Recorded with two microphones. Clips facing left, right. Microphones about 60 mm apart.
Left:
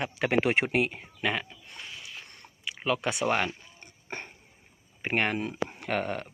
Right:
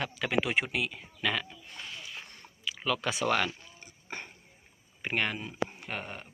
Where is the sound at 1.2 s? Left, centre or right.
Left.